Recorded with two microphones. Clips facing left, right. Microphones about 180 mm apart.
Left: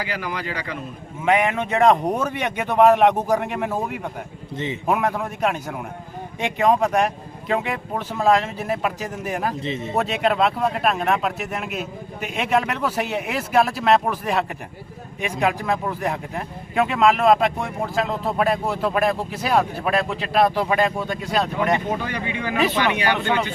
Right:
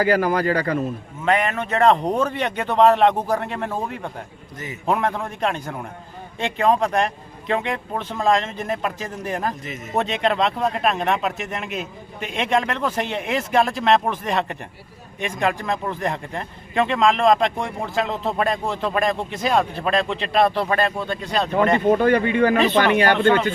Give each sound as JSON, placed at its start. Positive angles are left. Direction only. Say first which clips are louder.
{"t": 0.0, "sound": "speech", "louder": "right 10 dB", "side_deg": -45}
{"t": 1.2, "sound": "speech", "louder": "left 1 dB", "side_deg": 15}
{"t": 4.5, "sound": "speech", "louder": "left 7 dB", "side_deg": 25}
{"t": 4.9, "sound": "speech", "louder": "right 1 dB", "side_deg": 5}
{"t": 9.6, "sound": "speech", "louder": "left 7 dB", "side_deg": 30}
{"t": 9.9, "sound": "speech", "louder": "right 1 dB", "side_deg": 5}
{"t": 21.8, "sound": "speech", "louder": "right 10 dB", "side_deg": -50}
{"t": 23.1, "sound": "speech", "louder": "right 5 dB", "side_deg": 10}